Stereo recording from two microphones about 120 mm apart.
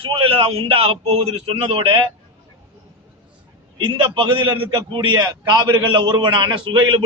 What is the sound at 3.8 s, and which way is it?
A man's voice, 45° right (ahead or behind).